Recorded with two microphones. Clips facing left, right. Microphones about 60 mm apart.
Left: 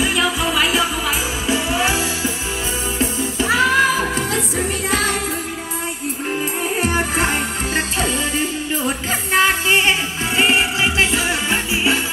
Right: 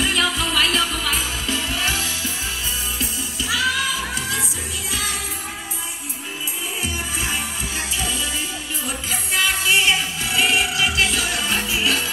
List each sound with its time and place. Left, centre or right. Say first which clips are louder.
0.0 s music: left 3 dB; centre; by 2.3 s left
3.0 s music: left 8 dB; left
6.8 s music: left 9 dB; left